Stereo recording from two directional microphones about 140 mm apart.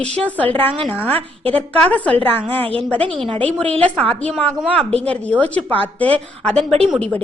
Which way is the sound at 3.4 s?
10° left (ahead or behind).